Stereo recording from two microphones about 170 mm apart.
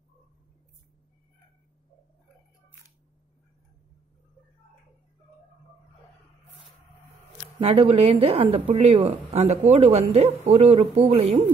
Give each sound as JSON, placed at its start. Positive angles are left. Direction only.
{"t": 6.6, "sound": "printer", "side_deg": 0}
{"t": 7.6, "sound": "a woman's voice", "side_deg": -35}